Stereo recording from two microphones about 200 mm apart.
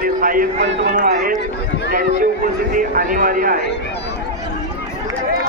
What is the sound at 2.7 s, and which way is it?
Speech, 45° right (ahead or behind).